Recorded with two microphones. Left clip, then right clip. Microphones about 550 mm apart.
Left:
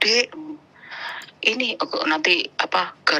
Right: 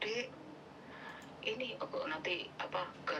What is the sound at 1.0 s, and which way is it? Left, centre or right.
A woman's voice, left.